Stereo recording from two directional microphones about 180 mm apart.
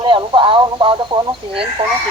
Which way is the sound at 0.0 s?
25° right (ahead or behind).